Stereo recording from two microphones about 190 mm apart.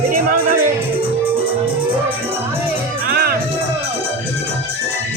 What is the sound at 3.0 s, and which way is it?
Music, 55° right (ahead or behind).